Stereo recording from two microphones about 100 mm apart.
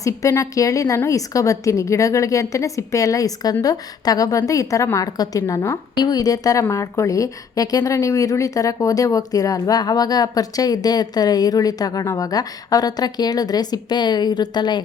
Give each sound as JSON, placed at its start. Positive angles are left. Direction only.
{"t": 0.0, "sound": "a woman's voice", "side_deg": 30}